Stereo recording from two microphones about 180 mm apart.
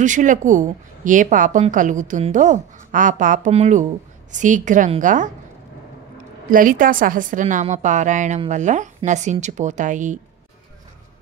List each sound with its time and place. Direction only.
0.0 s a woman's voice: 45° right (ahead or behind)
6.5 s a woman's voice: 50° right (ahead or behind)